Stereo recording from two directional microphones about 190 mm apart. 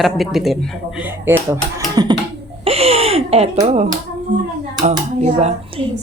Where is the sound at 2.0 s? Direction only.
20° right (ahead or behind).